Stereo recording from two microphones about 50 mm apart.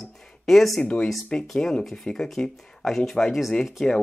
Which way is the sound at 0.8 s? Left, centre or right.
Left.